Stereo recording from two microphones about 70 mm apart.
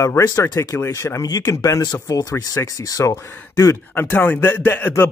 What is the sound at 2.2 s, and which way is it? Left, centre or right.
Speech, left.